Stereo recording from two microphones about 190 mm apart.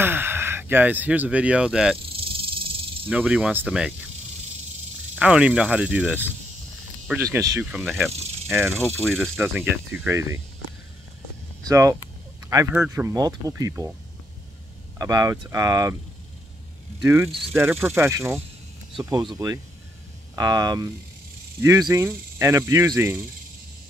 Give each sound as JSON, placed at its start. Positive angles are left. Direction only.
{"t": 0.0, "sound": "speech", "side_deg": -10}
{"t": 2.0, "sound": "snake", "side_deg": -30}
{"t": 3.1, "sound": "speech", "side_deg": -5}
{"t": 5.1, "sound": "speech", "side_deg": -5}
{"t": 7.6, "sound": "speech", "side_deg": -5}
{"t": 8.7, "sound": "speech", "side_deg": 0}
{"t": 9.4, "sound": "speech", "side_deg": -10}
{"t": 11.6, "sound": "speech", "side_deg": -15}
{"t": 15.0, "sound": "speech", "side_deg": -20}
{"t": 17.0, "sound": "speech", "side_deg": -15}